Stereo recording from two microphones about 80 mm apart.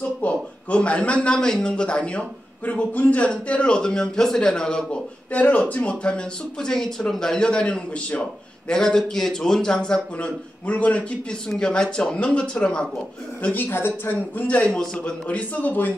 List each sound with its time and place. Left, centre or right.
0.2 s a man's voice: centre
13.4 s a man's voice: left
14.6 s a man's voice: centre
15.2 s a man's voice: centre